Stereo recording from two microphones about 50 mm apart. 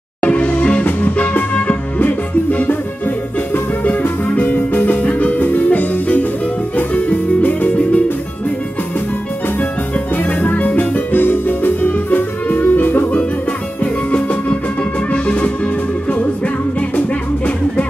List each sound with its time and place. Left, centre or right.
0.2 s music: left
3.8 s music: left
9.6 s music: left
11.1 s music: left
14.1 s music: left